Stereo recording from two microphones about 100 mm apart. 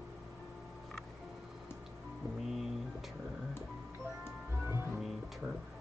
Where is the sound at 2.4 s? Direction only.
5° right (ahead or behind).